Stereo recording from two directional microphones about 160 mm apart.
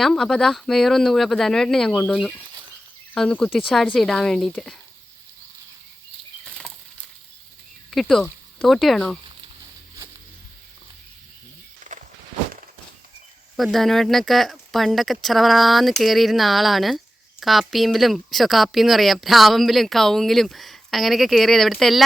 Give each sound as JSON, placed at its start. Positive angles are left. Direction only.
{"t": 0.0, "sound": "speech", "side_deg": 0}
{"t": 6.4, "sound": "patter", "side_deg": 5}
{"t": 7.9, "sound": "speech", "side_deg": 0}
{"t": 11.9, "sound": "walk", "side_deg": -55}
{"t": 13.6, "sound": "speech", "side_deg": 0}